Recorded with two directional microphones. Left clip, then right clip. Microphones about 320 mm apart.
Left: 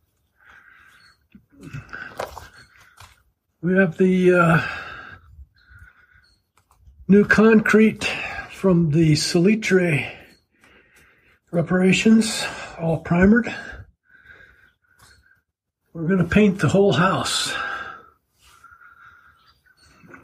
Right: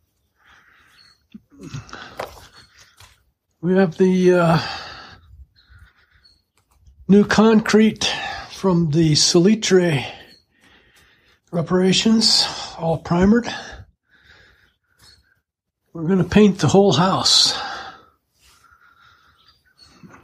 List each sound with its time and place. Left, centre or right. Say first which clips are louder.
1.3 s a sound: right 3 dB; centre
3.6 s speech: right 2 dB; centre
7.1 s speech: even; centre
8.0 s a sound: right 3 dB; centre
9.1 s speech: right 4 dB; centre
9.8 s speech: right 2 dB; right
11.6 s speech: right 1 dB; centre
16.0 s speech: right 3 dB; centre